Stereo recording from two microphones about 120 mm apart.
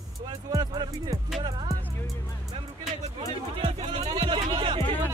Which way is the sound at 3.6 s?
50° right (ahead or behind).